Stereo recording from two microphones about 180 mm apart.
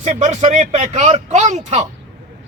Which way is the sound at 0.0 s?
40° right (ahead or behind).